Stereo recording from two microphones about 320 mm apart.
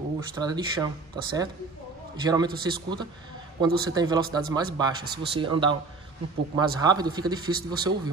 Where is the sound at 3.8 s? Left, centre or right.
Centre.